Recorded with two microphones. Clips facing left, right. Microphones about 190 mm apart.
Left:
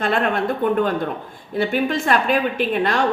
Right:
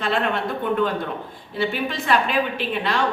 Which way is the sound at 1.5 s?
50° left (ahead or behind).